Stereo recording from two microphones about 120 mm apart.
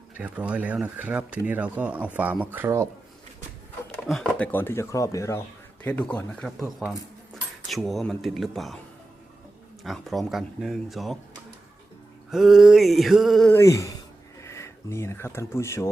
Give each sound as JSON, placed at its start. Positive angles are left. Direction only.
{"t": 0.2, "sound": "speech", "side_deg": -10}
{"t": 4.1, "sound": "speech", "side_deg": 10}
{"t": 5.8, "sound": "speech", "side_deg": 10}
{"t": 9.8, "sound": "speech", "side_deg": 0}
{"t": 12.3, "sound": "speech", "side_deg": 0}
{"t": 13.5, "sound": "speech", "side_deg": 25}